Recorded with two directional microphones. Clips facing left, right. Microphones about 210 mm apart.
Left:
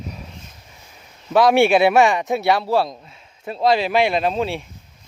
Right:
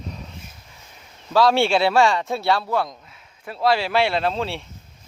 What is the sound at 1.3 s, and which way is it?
Speech, 15° left (ahead or behind).